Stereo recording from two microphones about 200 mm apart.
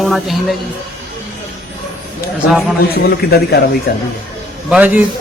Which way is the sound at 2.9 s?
50° left (ahead or behind).